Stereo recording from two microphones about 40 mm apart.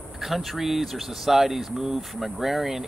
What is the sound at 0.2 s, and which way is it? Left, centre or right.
Speech, centre.